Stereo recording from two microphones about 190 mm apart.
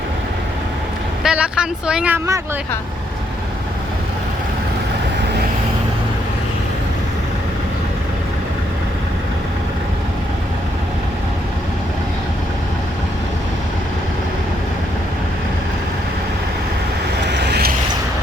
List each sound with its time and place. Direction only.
1.2 s speech: 5° right (ahead or behind)
17.2 s vehicle: 65° right (ahead or behind)